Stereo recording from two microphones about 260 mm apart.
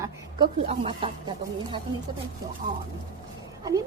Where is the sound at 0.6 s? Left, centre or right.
Right.